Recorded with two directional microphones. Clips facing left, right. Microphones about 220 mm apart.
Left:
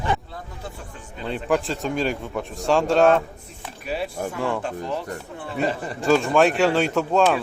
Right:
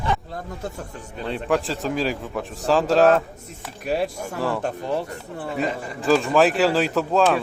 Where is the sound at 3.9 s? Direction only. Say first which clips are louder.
Right 3 dB; 45° right (ahead or behind).